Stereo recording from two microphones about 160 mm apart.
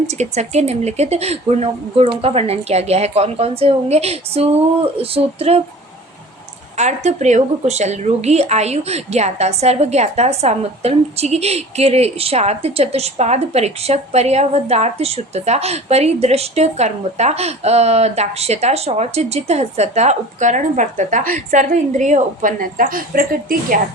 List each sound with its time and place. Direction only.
0.1 s speech: 45° right (ahead or behind)
6.7 s a woman's voice: 45° right (ahead or behind); by 23.7 s 65° right (ahead or behind)